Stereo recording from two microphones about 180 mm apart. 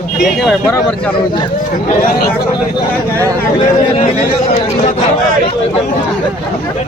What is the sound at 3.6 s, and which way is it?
Speech, 40° left (ahead or behind).